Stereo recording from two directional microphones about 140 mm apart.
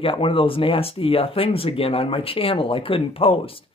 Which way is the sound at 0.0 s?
40° left (ahead or behind).